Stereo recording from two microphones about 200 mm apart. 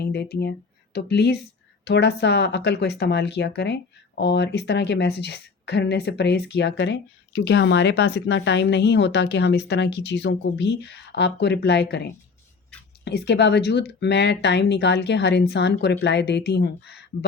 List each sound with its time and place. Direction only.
0.0 s speech: 55° left (ahead or behind)